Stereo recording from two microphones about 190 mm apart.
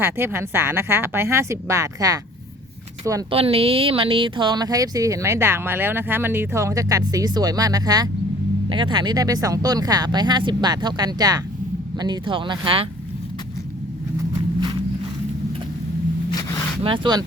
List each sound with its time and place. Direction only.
0.0 s a woman's voice: 10° right (ahead or behind)
3.3 s speech: 30° right (ahead or behind)
16.3 s a sound: 15° left (ahead or behind)
16.8 s speech: 25° right (ahead or behind)